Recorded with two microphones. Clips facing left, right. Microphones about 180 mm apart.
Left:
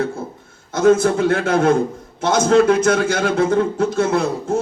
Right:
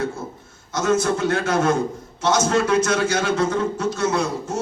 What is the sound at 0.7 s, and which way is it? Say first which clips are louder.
A man's voice: left 6 dB; 55° left (ahead or behind).